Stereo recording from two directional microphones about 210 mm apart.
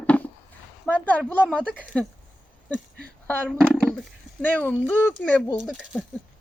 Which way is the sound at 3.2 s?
5° left (ahead or behind).